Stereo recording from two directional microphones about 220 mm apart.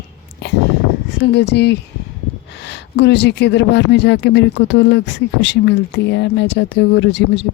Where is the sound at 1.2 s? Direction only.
50° left (ahead or behind).